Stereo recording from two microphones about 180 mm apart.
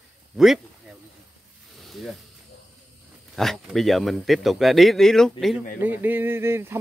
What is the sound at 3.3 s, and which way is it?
Speech, centre (ahead or behind).